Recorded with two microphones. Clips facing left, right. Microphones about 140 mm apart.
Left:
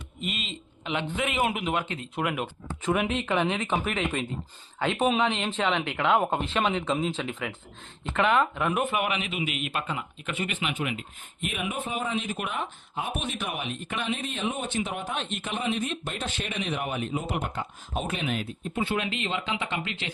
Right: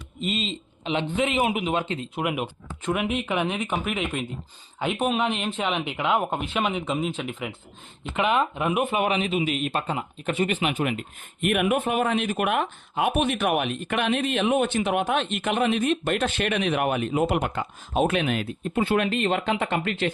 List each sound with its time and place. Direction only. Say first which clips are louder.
0.2 s a man's voice: right 7 dB; 25° right (ahead or behind)
2.8 s speech: right 1 dB; centre (ahead or behind)
6.2 s speech: even; centre (ahead or behind)
8.1 s speech: even; 15° right (ahead or behind)
8.9 s speech: right 5 dB; 30° right (ahead or behind); by 20.1 s 50° right (ahead or behind)